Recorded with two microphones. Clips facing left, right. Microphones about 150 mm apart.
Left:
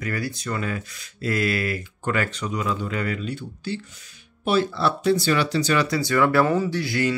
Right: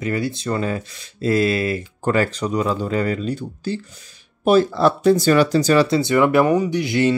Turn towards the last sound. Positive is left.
turn(degrees=-20)  # may be behind; listen again after turning